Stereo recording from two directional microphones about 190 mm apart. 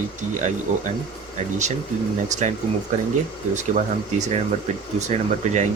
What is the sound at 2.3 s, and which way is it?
Speech, 40° right (ahead or behind).